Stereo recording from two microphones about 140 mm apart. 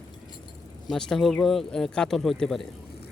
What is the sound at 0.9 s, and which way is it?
Speech, 5° left (ahead or behind).